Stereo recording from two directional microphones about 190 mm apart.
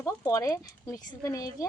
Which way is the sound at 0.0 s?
15° left (ahead or behind).